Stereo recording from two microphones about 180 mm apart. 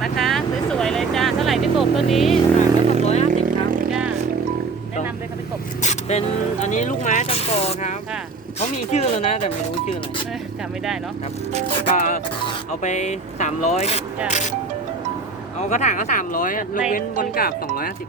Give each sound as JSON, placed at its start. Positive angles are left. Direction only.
{"t": 0.0, "sound": "vehicle", "side_deg": 0}
{"t": 2.6, "sound": "vehicle", "side_deg": 40}
{"t": 3.3, "sound": "vehicle", "side_deg": -50}
{"t": 5.8, "sound": "speech", "side_deg": 40}
{"t": 12.8, "sound": "speech", "side_deg": 40}
{"t": 15.7, "sound": "speech", "side_deg": 45}